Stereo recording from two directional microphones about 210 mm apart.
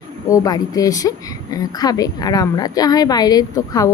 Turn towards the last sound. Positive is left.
turn(degrees=15)  # may be behind; listen again after turning